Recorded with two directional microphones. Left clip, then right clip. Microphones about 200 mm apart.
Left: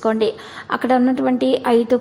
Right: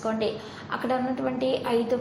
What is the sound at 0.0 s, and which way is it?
A woman's voice, 45° left (ahead or behind).